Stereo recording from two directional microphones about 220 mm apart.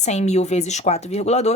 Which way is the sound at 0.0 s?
30° left (ahead or behind).